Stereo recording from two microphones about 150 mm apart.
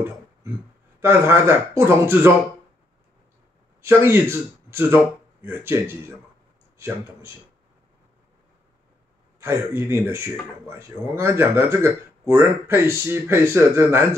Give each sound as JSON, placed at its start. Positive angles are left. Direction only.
{"t": 1.0, "sound": "speech", "side_deg": -15}
{"t": 3.8, "sound": "speech", "side_deg": -15}
{"t": 9.4, "sound": "speech", "side_deg": -15}